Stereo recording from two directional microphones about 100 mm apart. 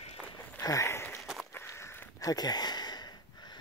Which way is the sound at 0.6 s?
35° left (ahead or behind).